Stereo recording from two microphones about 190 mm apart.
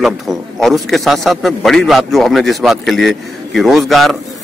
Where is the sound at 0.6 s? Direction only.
Centre (ahead or behind).